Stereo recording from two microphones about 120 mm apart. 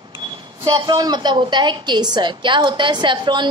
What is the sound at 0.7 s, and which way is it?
A woman's voice, 35° right (ahead or behind).